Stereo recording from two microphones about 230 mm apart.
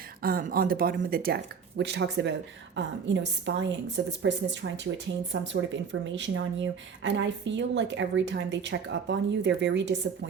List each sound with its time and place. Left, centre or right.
0.2 s speech: right